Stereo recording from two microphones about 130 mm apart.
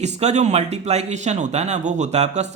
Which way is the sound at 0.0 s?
60° right (ahead or behind).